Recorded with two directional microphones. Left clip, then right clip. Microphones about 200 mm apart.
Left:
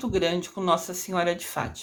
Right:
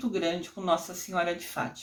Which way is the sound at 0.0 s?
35° left (ahead or behind).